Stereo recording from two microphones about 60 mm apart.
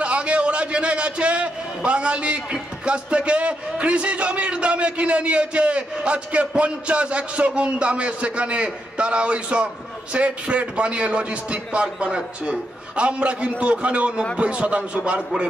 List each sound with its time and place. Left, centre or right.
0.0 s a man's voice: centre